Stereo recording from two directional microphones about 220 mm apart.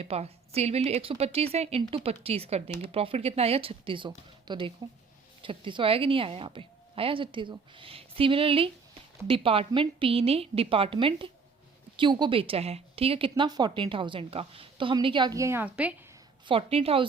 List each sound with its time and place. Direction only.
0.0 s speech: 30° right (ahead or behind)
2.6 s speech: 10° left (ahead or behind)
2.9 s speech: 25° right (ahead or behind); by 16.0 s 5° right (ahead or behind)
16.5 s speech: 25° right (ahead or behind)